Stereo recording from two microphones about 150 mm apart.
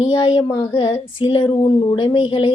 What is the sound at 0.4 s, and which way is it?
Speech, 20° left (ahead or behind).